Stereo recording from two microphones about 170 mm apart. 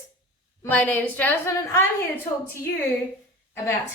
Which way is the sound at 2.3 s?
45° left (ahead or behind).